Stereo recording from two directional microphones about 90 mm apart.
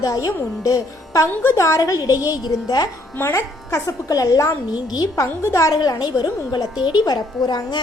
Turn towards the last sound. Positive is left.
turn(degrees=50)  # may be behind; listen again after turning